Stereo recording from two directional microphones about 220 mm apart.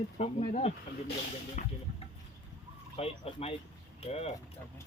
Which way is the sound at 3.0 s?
25° left (ahead or behind).